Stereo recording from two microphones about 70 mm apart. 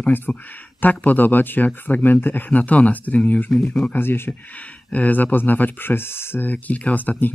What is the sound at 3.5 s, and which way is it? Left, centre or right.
Speech, centre.